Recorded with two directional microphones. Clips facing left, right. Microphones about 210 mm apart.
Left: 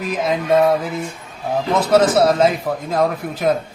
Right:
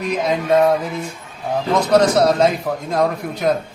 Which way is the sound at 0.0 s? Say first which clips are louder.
Right 1 dB; centre (ahead or behind).